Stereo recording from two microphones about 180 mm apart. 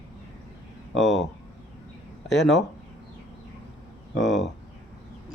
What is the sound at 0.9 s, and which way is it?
Speech, centre (ahead or behind).